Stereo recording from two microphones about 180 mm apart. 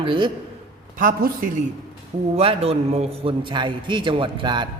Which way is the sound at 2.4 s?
30° right (ahead or behind).